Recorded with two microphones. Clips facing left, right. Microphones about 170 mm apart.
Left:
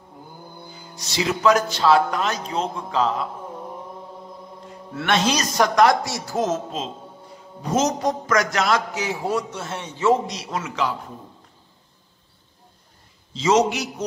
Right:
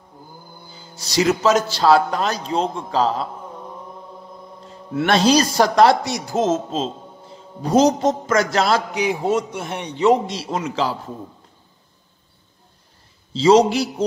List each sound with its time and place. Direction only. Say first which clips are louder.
0.9 s speech: right 6 dB; 40° right (ahead or behind)
5.0 s speech: right 6 dB; 35° right (ahead or behind)
6.0 s a man's voice: right 4 dB; 20° right (ahead or behind)
8.9 s a man's voice: right 5 dB; 15° right (ahead or behind)
10.3 s a man's voice: right 5 dB; 30° right (ahead or behind)
13.3 s speech: right 5 dB; 30° right (ahead or behind)